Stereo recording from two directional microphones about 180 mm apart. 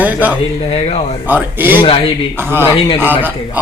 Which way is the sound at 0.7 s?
35° left (ahead or behind).